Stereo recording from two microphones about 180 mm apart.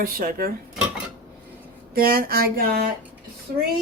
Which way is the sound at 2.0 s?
55° right (ahead or behind).